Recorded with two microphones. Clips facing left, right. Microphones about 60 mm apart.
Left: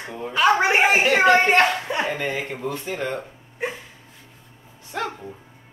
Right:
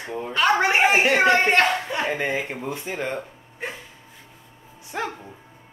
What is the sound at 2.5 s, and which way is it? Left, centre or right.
Speech, centre.